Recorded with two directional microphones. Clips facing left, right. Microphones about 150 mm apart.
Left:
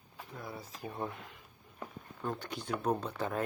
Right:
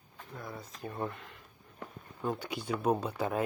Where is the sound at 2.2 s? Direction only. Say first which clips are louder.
Right 3 dB; 5° right (ahead or behind).